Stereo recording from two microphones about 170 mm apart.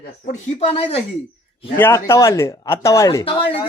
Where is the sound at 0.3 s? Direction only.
40° left (ahead or behind).